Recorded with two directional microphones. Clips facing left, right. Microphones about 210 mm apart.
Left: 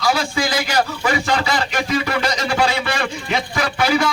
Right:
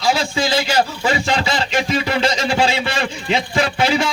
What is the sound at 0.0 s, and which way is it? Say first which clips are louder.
A man's voice: right 1 dB; 25° right (ahead or behind).